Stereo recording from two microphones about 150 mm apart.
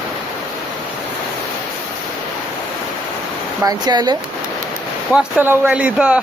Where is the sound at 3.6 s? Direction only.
30° right (ahead or behind).